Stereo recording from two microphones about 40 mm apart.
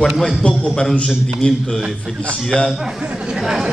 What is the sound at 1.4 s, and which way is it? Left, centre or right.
Speech, centre.